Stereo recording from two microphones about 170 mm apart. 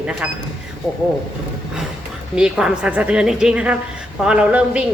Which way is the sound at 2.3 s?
5° right (ahead or behind).